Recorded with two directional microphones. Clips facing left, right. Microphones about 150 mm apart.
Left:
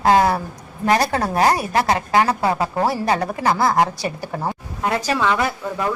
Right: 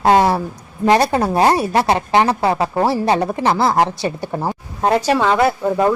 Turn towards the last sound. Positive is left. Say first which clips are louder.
# right 7 dB
turn(degrees=-35)  # may be behind; listen again after turning